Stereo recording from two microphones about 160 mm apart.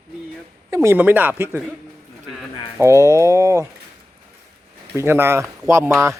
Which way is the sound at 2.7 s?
20° right (ahead or behind).